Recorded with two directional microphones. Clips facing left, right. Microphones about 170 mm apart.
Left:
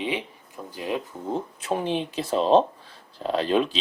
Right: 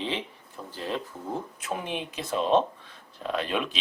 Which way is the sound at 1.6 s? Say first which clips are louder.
Left 6 dB; 30° left (ahead or behind).